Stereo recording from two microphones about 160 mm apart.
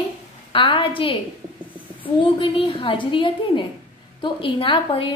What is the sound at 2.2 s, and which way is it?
A woman's voice, 30° left (ahead or behind).